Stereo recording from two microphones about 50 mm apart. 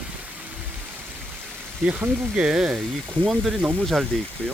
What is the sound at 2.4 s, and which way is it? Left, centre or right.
Speech, centre.